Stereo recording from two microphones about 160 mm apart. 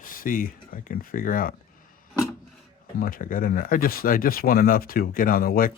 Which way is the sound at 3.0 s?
60° left (ahead or behind).